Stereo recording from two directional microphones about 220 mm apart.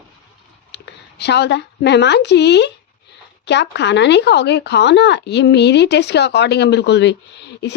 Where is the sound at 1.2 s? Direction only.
50° left (ahead or behind).